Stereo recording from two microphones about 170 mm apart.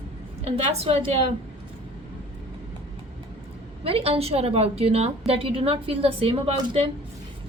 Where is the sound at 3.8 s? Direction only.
35° right (ahead or behind).